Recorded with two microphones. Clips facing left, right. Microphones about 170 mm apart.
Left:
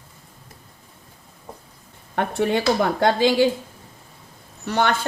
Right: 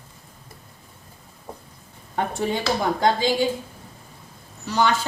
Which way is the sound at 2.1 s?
65° left (ahead or behind).